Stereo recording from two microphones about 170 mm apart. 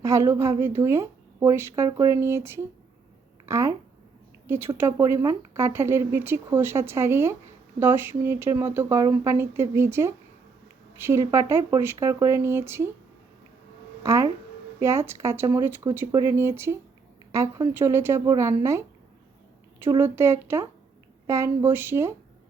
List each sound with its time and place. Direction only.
0.0 s speech: 15° right (ahead or behind)
14.0 s speech: 15° right (ahead or behind)